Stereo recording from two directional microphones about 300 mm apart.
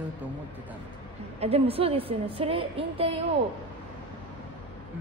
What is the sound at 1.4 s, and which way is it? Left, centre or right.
A woman's voice, centre.